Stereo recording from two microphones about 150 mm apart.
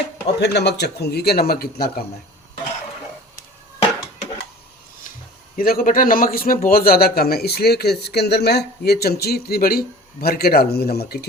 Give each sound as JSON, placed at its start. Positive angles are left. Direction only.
{"t": 0.5, "sound": "a man's voice", "side_deg": 90}
{"t": 5.5, "sound": "a man's voice", "side_deg": 75}